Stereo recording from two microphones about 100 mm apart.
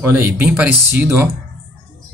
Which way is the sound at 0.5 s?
15° right (ahead or behind).